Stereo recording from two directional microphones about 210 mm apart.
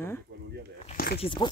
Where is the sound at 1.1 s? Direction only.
25° left (ahead or behind).